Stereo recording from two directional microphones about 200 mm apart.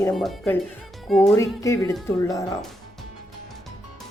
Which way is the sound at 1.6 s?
15° left (ahead or behind).